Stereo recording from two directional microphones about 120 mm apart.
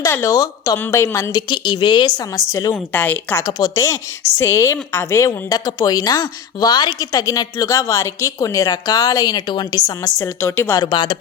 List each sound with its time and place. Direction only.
0.0 s a woman's voice: 25° left (ahead or behind)
2.7 s a woman's voice: 15° left (ahead or behind)
3.4 s a woman's voice: 30° left (ahead or behind)
10.8 s a woman's voice: 40° left (ahead or behind)